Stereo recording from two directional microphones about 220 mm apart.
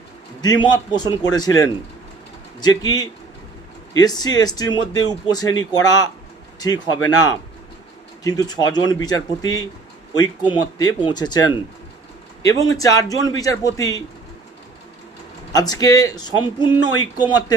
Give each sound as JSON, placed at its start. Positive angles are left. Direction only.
{"t": 0.4, "sound": "speech", "side_deg": 20}
{"t": 12.7, "sound": "speech", "side_deg": 15}
{"t": 15.5, "sound": "speech", "side_deg": 15}